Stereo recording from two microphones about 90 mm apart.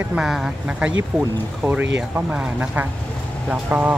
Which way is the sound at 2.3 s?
15° right (ahead or behind).